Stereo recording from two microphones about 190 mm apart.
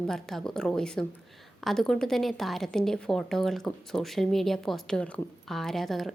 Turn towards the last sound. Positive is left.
turn(degrees=0)  # may be behind; listen again after turning